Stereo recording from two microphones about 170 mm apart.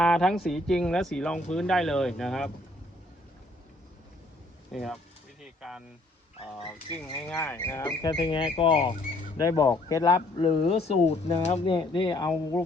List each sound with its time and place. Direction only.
0.0 s speech: 5° left (ahead or behind)
4.7 s speech: centre (ahead or behind)
5.4 s a sound: 5° right (ahead or behind)
6.7 s speech: 10° left (ahead or behind); by 8.9 s 30° left (ahead or behind)
9.4 s speech: 20° left (ahead or behind)
10.4 s speech: 35° left (ahead or behind)